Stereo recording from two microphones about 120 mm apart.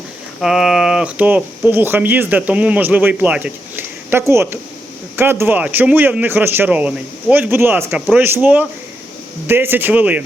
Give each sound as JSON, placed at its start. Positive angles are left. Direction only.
{"t": 0.4, "sound": "speech", "side_deg": 0}